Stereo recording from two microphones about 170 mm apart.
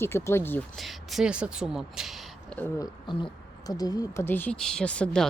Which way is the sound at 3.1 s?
25° left (ahead or behind).